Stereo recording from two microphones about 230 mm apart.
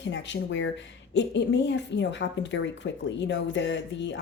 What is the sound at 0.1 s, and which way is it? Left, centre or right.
A woman's voice, left.